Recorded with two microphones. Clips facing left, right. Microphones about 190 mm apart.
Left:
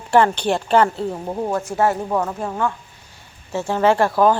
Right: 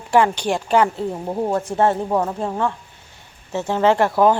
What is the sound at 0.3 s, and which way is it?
A woman's voice, 10° right (ahead or behind).